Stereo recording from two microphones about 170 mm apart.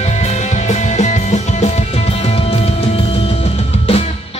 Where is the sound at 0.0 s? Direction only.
40° left (ahead or behind).